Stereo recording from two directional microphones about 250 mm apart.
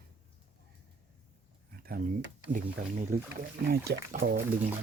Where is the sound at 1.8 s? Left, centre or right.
Right.